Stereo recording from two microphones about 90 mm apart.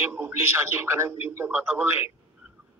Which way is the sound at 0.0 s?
25° right (ahead or behind).